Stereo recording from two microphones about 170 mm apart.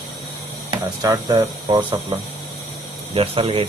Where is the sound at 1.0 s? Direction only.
20° right (ahead or behind).